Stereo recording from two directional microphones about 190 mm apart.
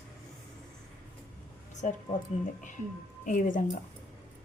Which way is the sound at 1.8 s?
40° left (ahead or behind).